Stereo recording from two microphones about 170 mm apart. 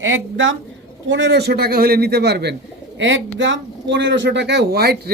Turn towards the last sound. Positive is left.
turn(degrees=-70)  # may be behind; listen again after turning